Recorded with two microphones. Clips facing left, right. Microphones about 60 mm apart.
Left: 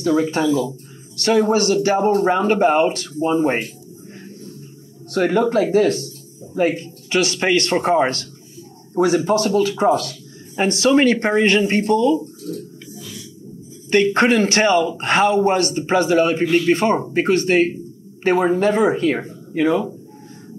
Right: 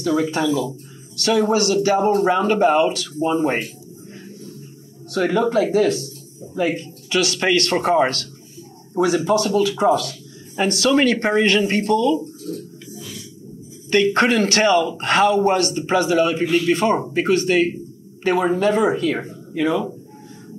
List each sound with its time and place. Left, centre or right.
0.2 s speech: left
5.1 s speech: left
14.1 s speech: left